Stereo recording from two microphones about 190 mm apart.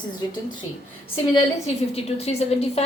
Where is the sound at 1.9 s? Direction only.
30° left (ahead or behind).